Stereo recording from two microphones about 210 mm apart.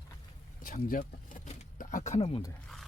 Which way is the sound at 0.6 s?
40° left (ahead or behind).